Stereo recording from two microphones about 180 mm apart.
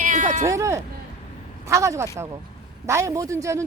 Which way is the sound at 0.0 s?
45° right (ahead or behind).